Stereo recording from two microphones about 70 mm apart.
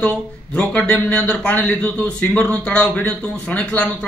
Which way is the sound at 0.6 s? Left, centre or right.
Centre.